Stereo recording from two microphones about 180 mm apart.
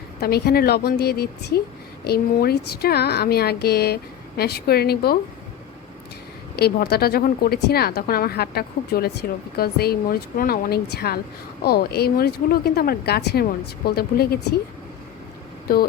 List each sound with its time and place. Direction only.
0.2 s speech: 60° left (ahead or behind)
6.6 s speech: 60° left (ahead or behind)